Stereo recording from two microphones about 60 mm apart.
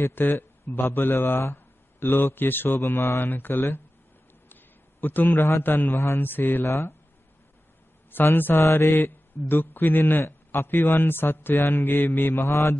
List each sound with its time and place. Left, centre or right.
0.0 s a man's voice: left
5.0 s a man's voice: left
6.6 s mantra: left
8.1 s a man's voice: left
8.6 s mantra: left
9.5 s a man's voice: left
12.4 s mantra: left